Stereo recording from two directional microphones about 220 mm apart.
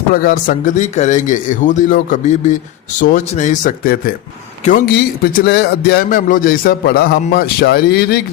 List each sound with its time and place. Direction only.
0.1 s speech: 40° left (ahead or behind)